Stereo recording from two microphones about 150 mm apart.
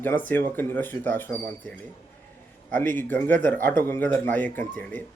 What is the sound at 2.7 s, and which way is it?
A man's voice, 15° left (ahead or behind).